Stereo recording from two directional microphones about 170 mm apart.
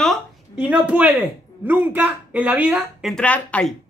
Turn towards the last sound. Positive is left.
turn(degrees=5)  # may be behind; listen again after turning